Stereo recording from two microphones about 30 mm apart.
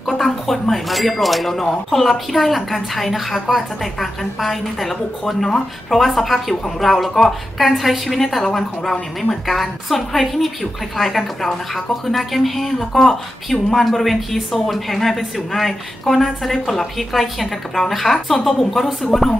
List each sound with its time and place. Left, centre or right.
0.0 s a sound: centre
0.5 s speech: centre
1.5 s speech: centre
5.2 s speech: centre
5.9 s a woman's voice: centre